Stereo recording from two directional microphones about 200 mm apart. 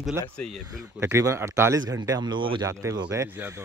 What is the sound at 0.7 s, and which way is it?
Speech, 15° right (ahead or behind).